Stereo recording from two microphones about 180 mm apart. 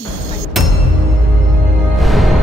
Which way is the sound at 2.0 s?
Centre (ahead or behind).